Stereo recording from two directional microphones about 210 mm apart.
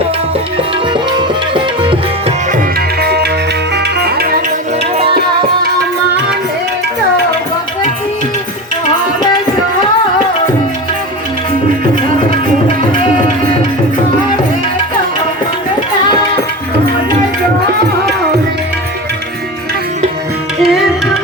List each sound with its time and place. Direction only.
1.1 s music: 20° right (ahead or behind)
2.5 s tabla: 45° right (ahead or behind)
3.8 s music: 50° right (ahead or behind)
20.6 s music: centre (ahead or behind)